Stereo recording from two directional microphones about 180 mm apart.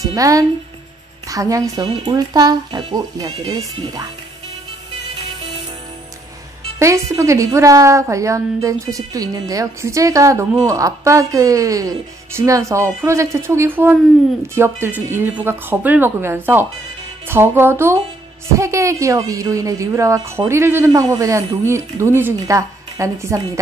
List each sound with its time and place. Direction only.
0.0 s speech: 20° right (ahead or behind)
6.8 s a woman's voice: 15° right (ahead or behind)